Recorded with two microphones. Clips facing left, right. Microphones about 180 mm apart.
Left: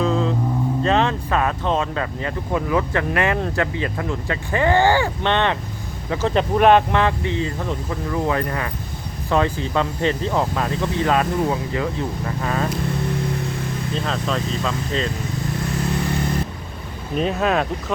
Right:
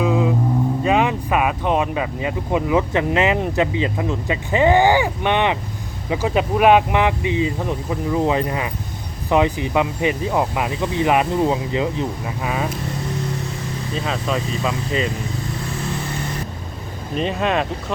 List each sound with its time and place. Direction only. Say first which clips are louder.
0.0 s vehicle: right 2 dB; 10° right (ahead or behind)
0.8 s speech: left 1 dB; 10° right (ahead or behind)
13.9 s speech: right 2 dB; 5° right (ahead or behind)
17.2 s speech: left 1 dB; centre (ahead or behind)